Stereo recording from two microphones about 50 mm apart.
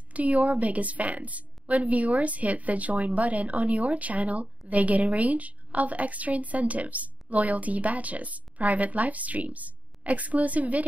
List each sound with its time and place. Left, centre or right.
0.1 s a woman's voice: right